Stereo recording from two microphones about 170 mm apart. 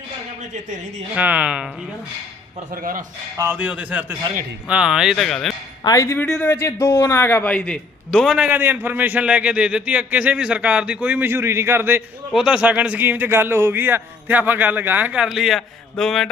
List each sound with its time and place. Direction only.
0.5 s a man's voice: 45° right (ahead or behind)
1.1 s a man's voice: 10° right (ahead or behind)
3.3 s a man's voice: 15° right (ahead or behind)
4.2 s a man's voice: 30° right (ahead or behind)
4.7 s speech: 5° right (ahead or behind)
5.8 s speech: 20° left (ahead or behind)
6.2 s a man's voice: 5° left (ahead or behind)
8.4 s a man's voice: 10° right (ahead or behind)